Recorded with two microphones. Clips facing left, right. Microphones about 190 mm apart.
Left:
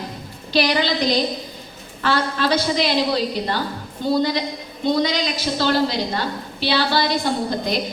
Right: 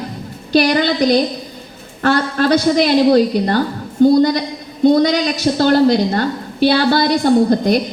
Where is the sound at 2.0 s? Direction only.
55° right (ahead or behind).